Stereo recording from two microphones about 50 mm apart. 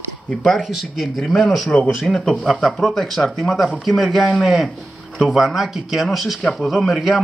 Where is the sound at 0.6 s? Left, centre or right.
Centre.